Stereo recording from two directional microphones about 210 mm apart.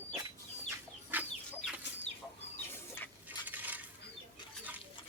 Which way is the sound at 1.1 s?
10° right (ahead or behind).